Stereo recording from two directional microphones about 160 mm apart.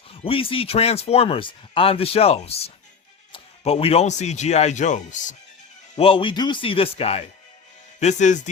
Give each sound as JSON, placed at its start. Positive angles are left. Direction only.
{"t": 0.1, "sound": "speech", "side_deg": 35}
{"t": 6.0, "sound": "speech", "side_deg": 35}